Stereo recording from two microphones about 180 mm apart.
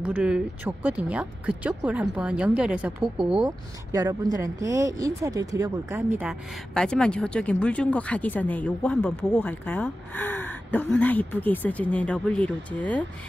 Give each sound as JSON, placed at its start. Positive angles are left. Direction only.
{"t": 0.0, "sound": "speech", "side_deg": -5}
{"t": 3.4, "sound": "speech", "side_deg": -20}
{"t": 6.7, "sound": "speech", "side_deg": 5}